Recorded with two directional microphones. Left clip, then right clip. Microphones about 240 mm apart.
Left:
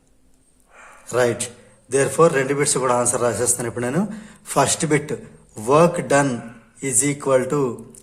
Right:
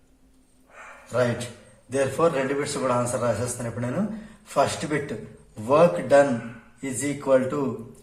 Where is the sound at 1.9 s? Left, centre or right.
Left.